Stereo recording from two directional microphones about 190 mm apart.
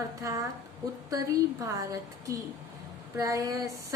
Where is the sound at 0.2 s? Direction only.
15° right (ahead or behind).